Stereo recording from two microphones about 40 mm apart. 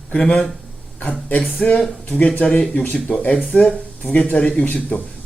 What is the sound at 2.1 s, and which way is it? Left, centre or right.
Speech, left.